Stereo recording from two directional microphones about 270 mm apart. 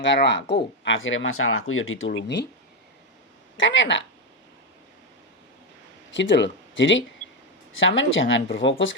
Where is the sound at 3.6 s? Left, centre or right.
Left.